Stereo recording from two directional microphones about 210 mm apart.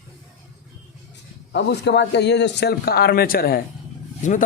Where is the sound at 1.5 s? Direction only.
55° left (ahead or behind).